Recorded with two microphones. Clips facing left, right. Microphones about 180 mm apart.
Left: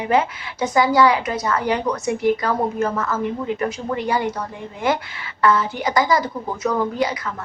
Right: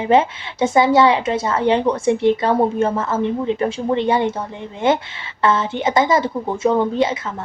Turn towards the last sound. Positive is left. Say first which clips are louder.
# right 4 dB
turn(degrees=-25)  # may be behind; listen again after turning